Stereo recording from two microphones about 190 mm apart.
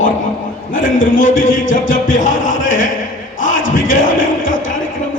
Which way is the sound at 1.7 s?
45° left (ahead or behind).